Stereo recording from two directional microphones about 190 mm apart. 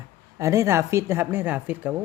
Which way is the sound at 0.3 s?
15° right (ahead or behind).